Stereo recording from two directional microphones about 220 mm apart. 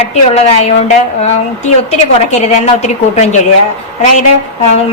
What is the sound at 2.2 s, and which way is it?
A woman's voice, 30° left (ahead or behind).